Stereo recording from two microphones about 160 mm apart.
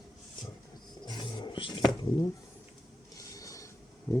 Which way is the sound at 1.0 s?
30° left (ahead or behind).